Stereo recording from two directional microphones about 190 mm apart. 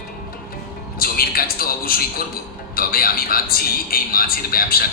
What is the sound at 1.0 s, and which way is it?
A man's voice, 50° left (ahead or behind).